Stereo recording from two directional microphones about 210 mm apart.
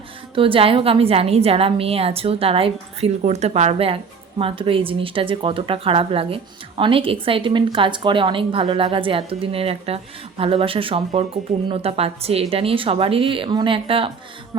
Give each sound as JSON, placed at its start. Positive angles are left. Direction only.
{"t": 0.3, "sound": "a woman's voice", "side_deg": -25}